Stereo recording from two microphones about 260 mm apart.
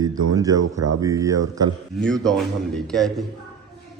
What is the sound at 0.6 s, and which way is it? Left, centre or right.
Speech, right.